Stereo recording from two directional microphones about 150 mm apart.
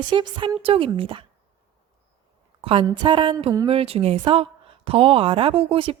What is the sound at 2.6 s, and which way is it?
A woman's voice, 40° right (ahead or behind).